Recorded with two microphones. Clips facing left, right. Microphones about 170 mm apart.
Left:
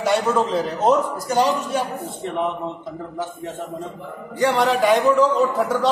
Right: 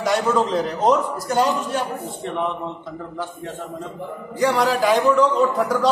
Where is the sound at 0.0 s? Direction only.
Centre (ahead or behind).